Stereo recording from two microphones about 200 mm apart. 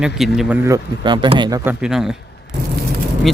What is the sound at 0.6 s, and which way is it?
Speech, 20° right (ahead or behind).